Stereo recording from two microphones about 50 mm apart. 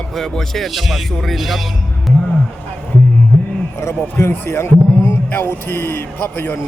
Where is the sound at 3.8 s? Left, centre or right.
Left.